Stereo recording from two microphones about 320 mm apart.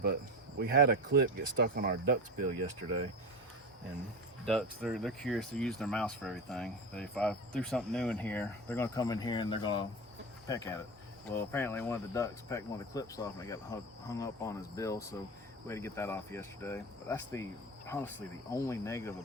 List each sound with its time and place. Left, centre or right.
0.6 s speech: right
4.4 s speech: centre